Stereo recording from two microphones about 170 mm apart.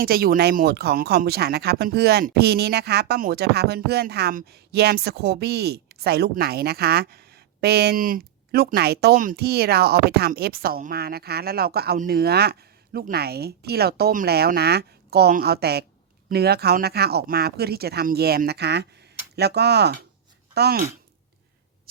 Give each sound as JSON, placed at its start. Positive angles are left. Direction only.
{"t": 0.0, "sound": "speech", "side_deg": -60}